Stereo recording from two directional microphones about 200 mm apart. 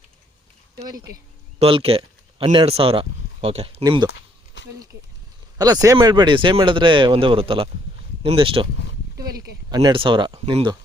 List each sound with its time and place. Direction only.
0.9 s speech: 15° right (ahead or behind)
1.5 s speech: 30° right (ahead or behind)
4.6 s a sound: 65° left (ahead or behind)
5.5 s speech: 20° right (ahead or behind)